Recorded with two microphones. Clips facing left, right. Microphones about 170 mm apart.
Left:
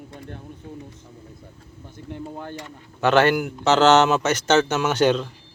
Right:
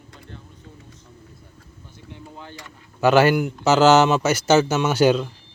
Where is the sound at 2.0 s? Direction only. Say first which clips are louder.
Left 7 dB; 50° left (ahead or behind).